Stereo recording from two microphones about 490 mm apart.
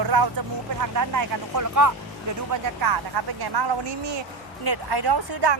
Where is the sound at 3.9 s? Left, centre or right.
Right.